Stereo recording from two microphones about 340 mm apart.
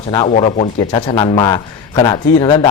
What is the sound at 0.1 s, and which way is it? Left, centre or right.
A man's voice, centre.